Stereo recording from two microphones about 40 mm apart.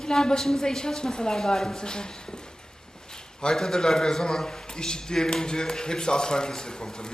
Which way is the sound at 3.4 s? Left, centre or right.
Centre.